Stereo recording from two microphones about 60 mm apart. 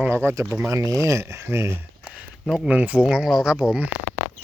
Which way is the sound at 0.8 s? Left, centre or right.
Right.